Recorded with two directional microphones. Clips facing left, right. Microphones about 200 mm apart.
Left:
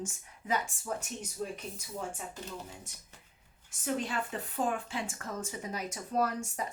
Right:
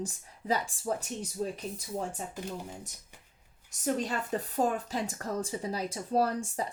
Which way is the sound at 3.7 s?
40° right (ahead or behind).